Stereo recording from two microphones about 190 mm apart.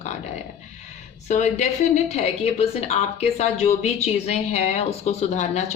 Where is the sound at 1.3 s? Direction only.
40° left (ahead or behind).